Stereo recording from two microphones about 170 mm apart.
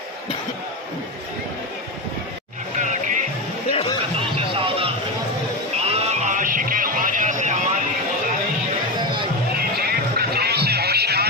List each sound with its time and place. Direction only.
2.8 s music: 45° right (ahead or behind)
3.7 s speech: 30° left (ahead or behind)
4.6 s a sound: 35° right (ahead or behind)
5.9 s music: 40° right (ahead or behind)
9.0 s music: 30° right (ahead or behind)
9.6 s music: 65° right (ahead or behind)